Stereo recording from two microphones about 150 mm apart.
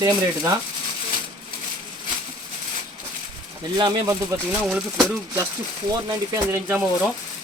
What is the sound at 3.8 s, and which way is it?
Speech, 30° right (ahead or behind).